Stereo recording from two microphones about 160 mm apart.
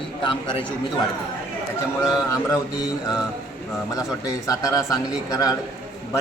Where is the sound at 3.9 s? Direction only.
20° left (ahead or behind).